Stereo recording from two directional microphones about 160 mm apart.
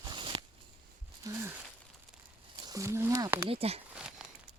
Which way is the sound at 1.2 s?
15° right (ahead or behind).